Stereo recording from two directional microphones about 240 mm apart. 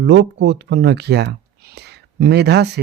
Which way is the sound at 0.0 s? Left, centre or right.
Right.